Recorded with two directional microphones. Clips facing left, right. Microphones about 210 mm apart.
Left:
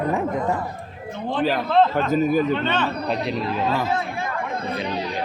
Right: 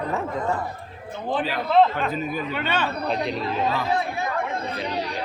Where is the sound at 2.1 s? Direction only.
45° left (ahead or behind).